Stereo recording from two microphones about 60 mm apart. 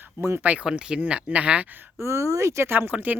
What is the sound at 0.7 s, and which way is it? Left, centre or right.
Speech, centre.